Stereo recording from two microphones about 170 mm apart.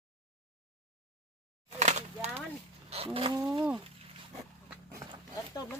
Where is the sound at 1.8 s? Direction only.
45° right (ahead or behind).